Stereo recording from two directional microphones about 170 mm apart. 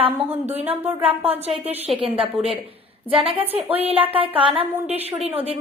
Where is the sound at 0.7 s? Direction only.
35° right (ahead or behind).